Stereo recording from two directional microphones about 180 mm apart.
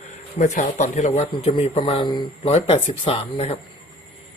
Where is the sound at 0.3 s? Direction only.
40° left (ahead or behind).